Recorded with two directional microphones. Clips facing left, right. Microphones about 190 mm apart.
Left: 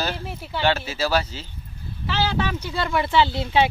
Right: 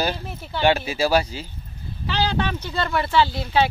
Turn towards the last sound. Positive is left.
turn(degrees=20)  # may be behind; listen again after turning